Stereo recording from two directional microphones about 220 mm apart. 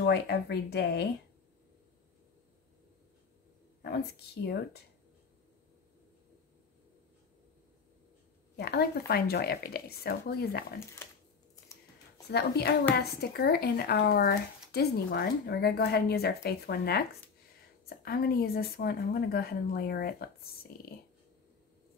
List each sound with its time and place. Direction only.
0.0 s speech: 50° left (ahead or behind)
3.8 s speech: 50° left (ahead or behind)
8.5 s speech: 45° left (ahead or behind)
12.3 s speech: 45° left (ahead or behind)